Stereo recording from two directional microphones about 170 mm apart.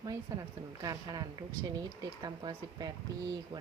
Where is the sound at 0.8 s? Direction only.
20° right (ahead or behind).